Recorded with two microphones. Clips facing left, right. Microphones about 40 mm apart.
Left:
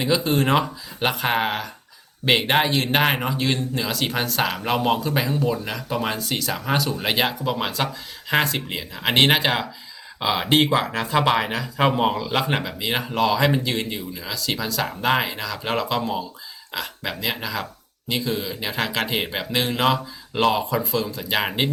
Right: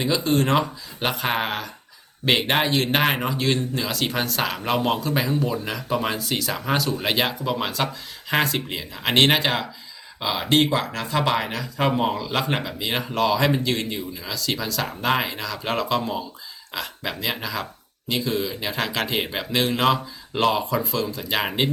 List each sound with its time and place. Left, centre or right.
0.0 s speech: centre